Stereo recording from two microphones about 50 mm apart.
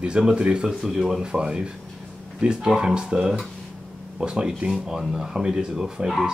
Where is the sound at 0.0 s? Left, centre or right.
Centre.